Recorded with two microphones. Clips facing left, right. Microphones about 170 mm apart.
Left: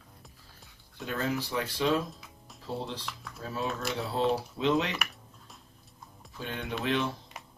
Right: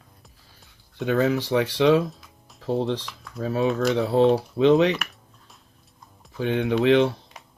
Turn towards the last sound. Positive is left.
turn(degrees=-70)  # may be behind; listen again after turning